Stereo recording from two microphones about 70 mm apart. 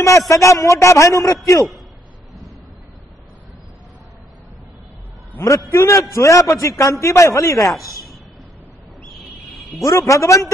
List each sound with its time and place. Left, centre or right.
0.3 s a man's voice: left
5.4 s a man's voice: left
9.3 s a sound: centre
9.8 s a man's voice: left